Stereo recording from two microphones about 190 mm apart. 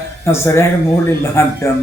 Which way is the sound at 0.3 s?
15° left (ahead or behind).